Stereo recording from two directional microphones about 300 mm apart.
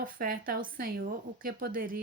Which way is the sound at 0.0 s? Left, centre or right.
Right.